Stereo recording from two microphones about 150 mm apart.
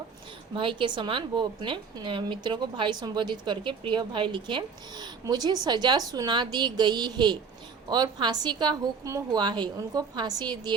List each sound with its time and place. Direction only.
0.5 s a woman's voice: 35° right (ahead or behind)